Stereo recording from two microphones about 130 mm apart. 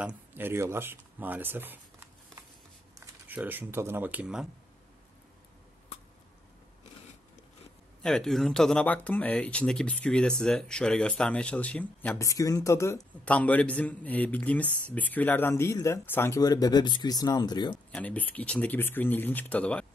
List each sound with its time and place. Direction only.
0.0 s speech: 15° right (ahead or behind)
3.3 s speech: 15° right (ahead or behind)
8.0 s a man's voice: 5° left (ahead or behind)
12.2 s speech: 25° left (ahead or behind)
13.2 s a man's voice: 10° left (ahead or behind); by 17.7 s 35° left (ahead or behind)
17.9 s a man's voice: 10° left (ahead or behind)